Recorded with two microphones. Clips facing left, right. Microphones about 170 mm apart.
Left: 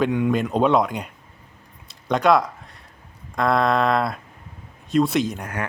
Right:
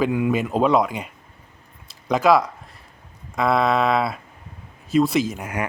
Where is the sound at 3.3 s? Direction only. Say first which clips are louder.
Even; 5° right (ahead or behind).